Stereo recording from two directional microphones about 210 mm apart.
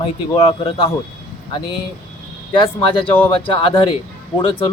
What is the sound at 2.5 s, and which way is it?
Speech, 25° left (ahead or behind).